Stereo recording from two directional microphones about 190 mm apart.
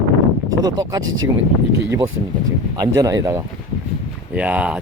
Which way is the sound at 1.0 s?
90° right.